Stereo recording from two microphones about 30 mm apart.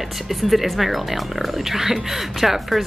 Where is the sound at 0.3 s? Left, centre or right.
Centre.